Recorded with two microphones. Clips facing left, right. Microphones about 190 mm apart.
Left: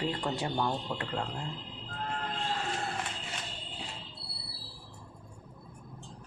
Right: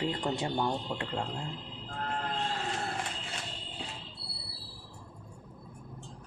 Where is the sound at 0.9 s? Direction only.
5° right (ahead or behind).